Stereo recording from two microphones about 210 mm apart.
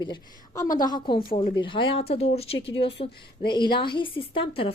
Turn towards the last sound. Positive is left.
turn(degrees=25)  # may be behind; listen again after turning